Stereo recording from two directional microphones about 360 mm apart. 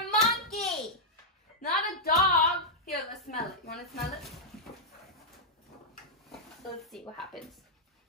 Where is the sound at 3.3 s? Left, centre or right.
Left.